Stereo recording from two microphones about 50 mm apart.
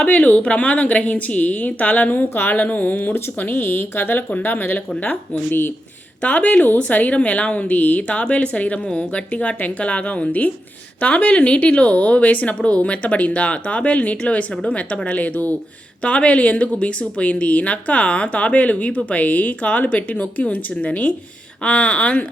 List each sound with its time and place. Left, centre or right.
0.0 s speech: left
3.5 s speech: left
4.3 s speech: left
5.5 s speech: left
6.2 s speech: left